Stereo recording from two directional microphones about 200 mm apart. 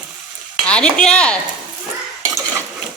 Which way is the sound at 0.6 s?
5° left (ahead or behind).